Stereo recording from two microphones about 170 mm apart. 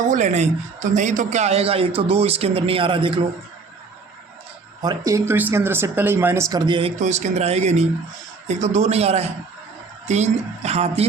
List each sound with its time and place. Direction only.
0.1 s speech: 45° right (ahead or behind)
4.8 s speech: 20° right (ahead or behind)
7.0 s speech: 40° right (ahead or behind)